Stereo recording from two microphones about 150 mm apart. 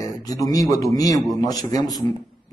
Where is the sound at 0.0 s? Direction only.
25° left (ahead or behind).